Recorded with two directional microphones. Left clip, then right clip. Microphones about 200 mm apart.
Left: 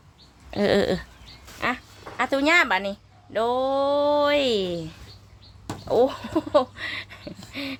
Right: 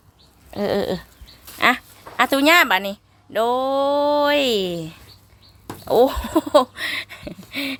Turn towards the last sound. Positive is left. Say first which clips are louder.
# right 6 dB
turn(degrees=-30)  # may be behind; listen again after turning